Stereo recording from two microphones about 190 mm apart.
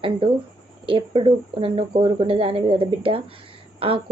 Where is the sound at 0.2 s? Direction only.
25° right (ahead or behind).